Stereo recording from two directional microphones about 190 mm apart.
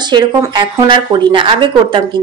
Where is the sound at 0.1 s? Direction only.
25° right (ahead or behind).